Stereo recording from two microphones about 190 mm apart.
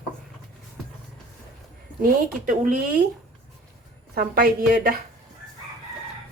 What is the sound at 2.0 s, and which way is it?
Speech, 45° right (ahead or behind).